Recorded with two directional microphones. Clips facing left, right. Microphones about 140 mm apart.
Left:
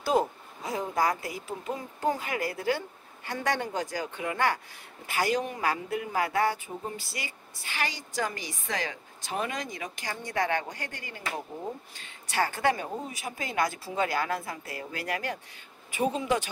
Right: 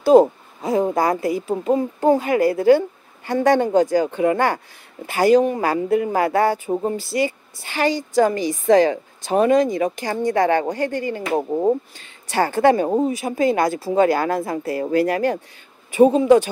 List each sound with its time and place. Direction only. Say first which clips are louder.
0.2 s speech: right 14 dB; 50° right (ahead or behind)
1.0 s a woman's voice: right 8 dB; 35° right (ahead or behind)
1.5 s speech: right 15 dB; 55° right (ahead or behind)
2.1 s a woman's voice: right 14 dB; 30° right (ahead or behind)
6.5 s speech: right 14 dB; 55° right (ahead or behind)
7.2 s a woman's voice: right 19 dB; 35° right (ahead or behind)
11.2 s speech: right 15 dB; 60° right (ahead or behind)
12.3 s a woman's voice: right 11 dB; 35° right (ahead or behind)